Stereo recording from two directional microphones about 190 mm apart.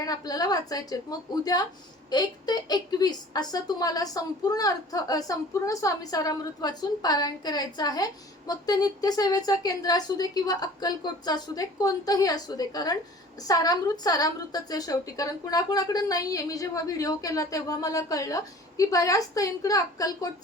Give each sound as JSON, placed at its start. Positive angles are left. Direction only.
{"t": 0.0, "sound": "a woman's voice", "side_deg": 20}
{"t": 2.0, "sound": "a woman's voice", "side_deg": 20}